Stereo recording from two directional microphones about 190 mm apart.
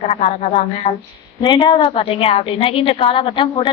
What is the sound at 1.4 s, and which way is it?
A woman's voice, 25° left (ahead or behind).